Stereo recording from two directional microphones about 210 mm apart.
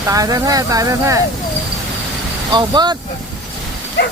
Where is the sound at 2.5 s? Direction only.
20° right (ahead or behind).